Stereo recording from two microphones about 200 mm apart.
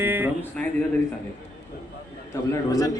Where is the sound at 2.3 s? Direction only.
15° left (ahead or behind).